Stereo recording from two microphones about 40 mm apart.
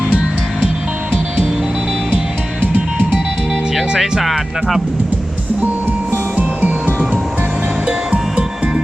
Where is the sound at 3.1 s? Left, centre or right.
Centre.